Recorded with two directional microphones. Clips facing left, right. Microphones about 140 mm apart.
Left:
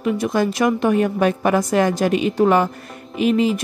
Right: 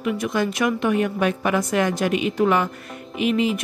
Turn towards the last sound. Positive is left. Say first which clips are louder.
# left 3 dB
turn(degrees=35)  # may be behind; listen again after turning